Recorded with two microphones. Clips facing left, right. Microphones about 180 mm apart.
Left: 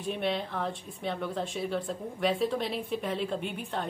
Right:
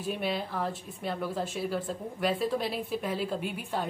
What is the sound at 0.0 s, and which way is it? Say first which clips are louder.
Speech: left 1 dB; 5° right (ahead or behind).